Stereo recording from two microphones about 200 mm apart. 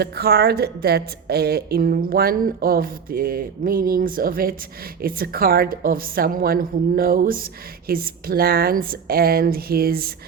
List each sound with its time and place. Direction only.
0.0 s speech: 50° right (ahead or behind)